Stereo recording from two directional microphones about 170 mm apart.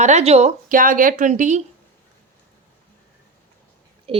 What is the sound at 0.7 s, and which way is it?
Speech, 55° right (ahead or behind).